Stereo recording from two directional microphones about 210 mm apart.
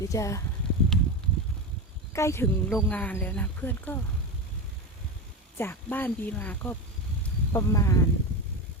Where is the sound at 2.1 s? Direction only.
15° left (ahead or behind).